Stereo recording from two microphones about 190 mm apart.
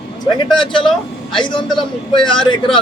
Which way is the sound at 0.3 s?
25° left (ahead or behind).